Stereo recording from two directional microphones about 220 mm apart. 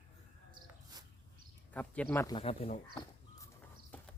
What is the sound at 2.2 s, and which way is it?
Speech, 25° left (ahead or behind).